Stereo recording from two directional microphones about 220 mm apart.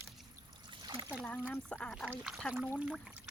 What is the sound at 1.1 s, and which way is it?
Speech, centre (ahead or behind).